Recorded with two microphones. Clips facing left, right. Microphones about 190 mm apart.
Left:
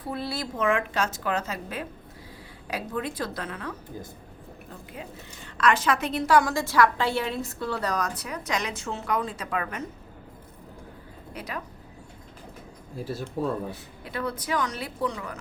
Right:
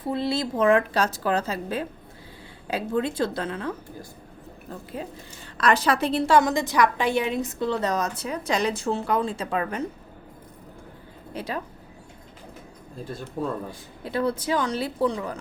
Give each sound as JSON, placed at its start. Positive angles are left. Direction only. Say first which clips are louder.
{"t": 0.0, "sound": "a woman's voice", "louder": "right 6 dB", "side_deg": -25}
{"t": 0.6, "sound": "a woman's voice", "louder": "right 5 dB", "side_deg": -35}
{"t": 5.5, "sound": "a woman's voice", "louder": "right 2 dB", "side_deg": -35}
{"t": 11.3, "sound": "a woman's voice", "louder": "right 5 dB", "side_deg": -30}
{"t": 13.0, "sound": "speech", "louder": "left 1 dB", "side_deg": 5}
{"t": 14.0, "sound": "a woman's voice", "louder": "right 7 dB", "side_deg": -30}